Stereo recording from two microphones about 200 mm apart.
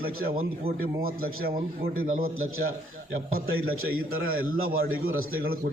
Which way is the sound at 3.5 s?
90° right.